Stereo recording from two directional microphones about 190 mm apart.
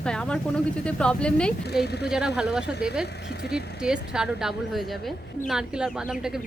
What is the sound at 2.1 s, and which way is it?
Speech, 5° right (ahead or behind).